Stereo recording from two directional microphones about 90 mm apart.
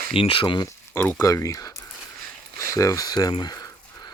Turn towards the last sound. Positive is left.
turn(degrees=45)  # may be behind; listen again after turning